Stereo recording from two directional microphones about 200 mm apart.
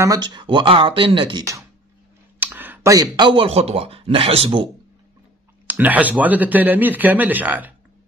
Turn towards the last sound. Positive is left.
turn(degrees=-10)  # may be behind; listen again after turning